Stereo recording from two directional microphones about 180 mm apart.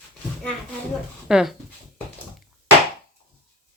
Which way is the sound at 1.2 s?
5° right (ahead or behind).